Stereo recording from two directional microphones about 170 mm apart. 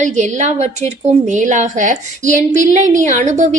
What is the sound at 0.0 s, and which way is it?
A woman's voice, 45° right (ahead or behind).